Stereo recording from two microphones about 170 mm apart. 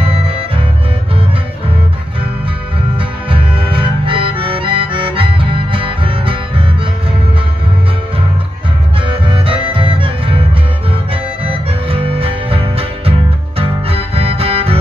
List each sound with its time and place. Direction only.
0.0 s music: 35° right (ahead or behind)
3.3 s harmonica: 30° right (ahead or behind)
9.0 s music: 30° right (ahead or behind)
11.4 s music: 35° right (ahead or behind)